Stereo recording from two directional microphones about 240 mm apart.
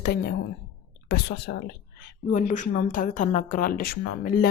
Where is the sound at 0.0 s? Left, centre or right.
Left.